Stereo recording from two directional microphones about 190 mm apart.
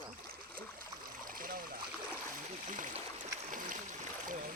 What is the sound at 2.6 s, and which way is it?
Stream, 40° right (ahead or behind).